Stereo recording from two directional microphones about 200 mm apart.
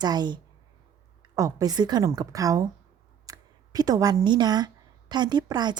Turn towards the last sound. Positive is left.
turn(degrees=-20)  # may be behind; listen again after turning